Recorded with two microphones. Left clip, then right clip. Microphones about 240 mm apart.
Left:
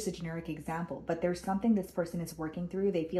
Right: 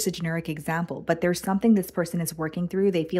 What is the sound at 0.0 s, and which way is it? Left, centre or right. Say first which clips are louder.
Speech: right 9 dB; right.